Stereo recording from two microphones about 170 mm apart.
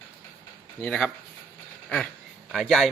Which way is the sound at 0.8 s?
10° left (ahead or behind).